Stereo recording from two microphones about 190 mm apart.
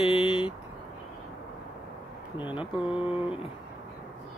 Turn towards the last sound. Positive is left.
turn(degrees=-5)  # may be behind; listen again after turning